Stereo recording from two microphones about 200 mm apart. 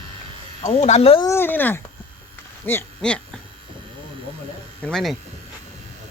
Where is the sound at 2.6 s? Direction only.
10° left (ahead or behind).